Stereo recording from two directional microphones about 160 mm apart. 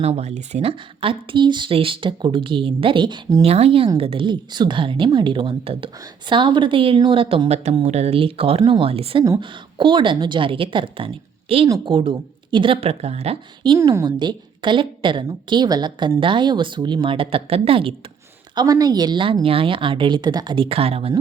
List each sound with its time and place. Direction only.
0.0 s a woman's voice: 40° right (ahead or behind)
13.6 s a woman's voice: 25° right (ahead or behind)
18.5 s a woman's voice: 25° right (ahead or behind)